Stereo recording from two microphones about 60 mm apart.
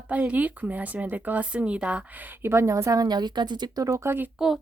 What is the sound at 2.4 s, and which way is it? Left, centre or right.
Speech, right.